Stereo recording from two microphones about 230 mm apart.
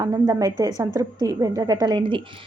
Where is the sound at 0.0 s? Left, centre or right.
Centre.